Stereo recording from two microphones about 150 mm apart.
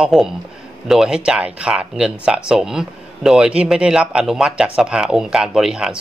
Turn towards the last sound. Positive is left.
turn(degrees=-5)  # may be behind; listen again after turning